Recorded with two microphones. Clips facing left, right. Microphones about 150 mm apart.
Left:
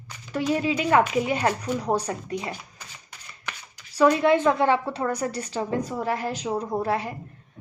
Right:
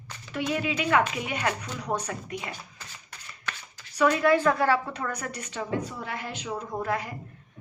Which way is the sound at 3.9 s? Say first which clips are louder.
Left 3 dB; 30° left (ahead or behind).